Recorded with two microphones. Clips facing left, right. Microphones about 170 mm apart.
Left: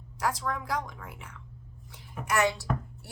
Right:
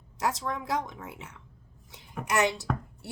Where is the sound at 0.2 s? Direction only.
20° right (ahead or behind).